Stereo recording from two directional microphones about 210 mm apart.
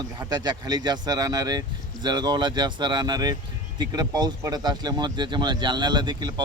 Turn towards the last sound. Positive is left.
turn(degrees=-20)  # may be behind; listen again after turning